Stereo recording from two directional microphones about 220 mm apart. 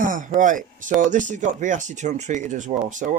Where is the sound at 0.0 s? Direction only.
35° right (ahead or behind).